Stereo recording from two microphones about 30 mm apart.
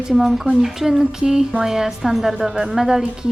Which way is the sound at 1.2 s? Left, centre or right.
Right.